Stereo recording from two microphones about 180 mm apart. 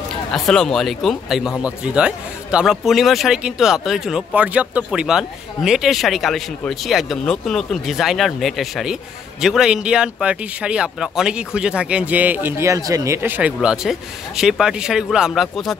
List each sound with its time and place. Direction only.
0.3 s a man's voice: 5° left (ahead or behind)